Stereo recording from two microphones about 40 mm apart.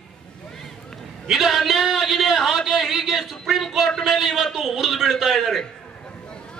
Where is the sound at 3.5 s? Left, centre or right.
Centre.